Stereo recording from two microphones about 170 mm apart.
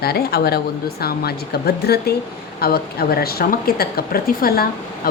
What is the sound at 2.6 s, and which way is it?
Speech, 65° left (ahead or behind).